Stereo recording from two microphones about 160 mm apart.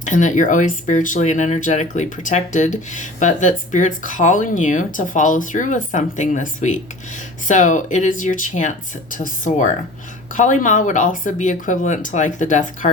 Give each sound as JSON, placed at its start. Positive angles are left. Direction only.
{"t": 0.0, "sound": "speech", "side_deg": 50}